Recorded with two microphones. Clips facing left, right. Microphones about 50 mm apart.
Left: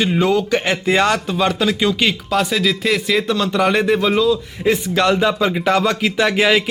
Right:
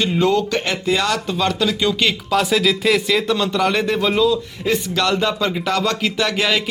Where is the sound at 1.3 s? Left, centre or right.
Centre.